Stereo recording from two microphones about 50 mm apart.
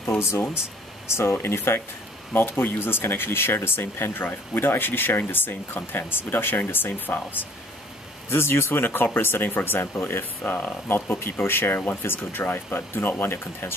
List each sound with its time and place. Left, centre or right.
0.0 s speech: left
1.4 s speech: left
8.3 s speech: left
10.4 s speech: left
11.1 s speech: left